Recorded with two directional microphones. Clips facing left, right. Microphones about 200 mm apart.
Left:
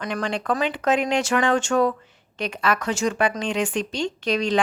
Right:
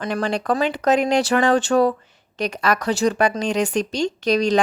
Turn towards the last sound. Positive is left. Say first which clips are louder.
# right 4 dB
turn(degrees=-40)  # may be behind; listen again after turning